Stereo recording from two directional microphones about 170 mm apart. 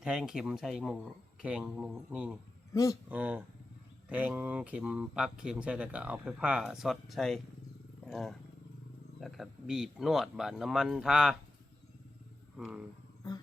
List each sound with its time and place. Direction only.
0.0 s speech: 5° right (ahead or behind)
2.7 s speech: 20° left (ahead or behind)
3.1 s speech: 10° right (ahead or behind)
12.5 s speech: 5° right (ahead or behind)